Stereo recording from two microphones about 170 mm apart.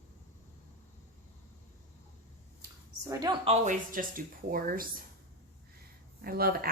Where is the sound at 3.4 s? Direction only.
50° right (ahead or behind).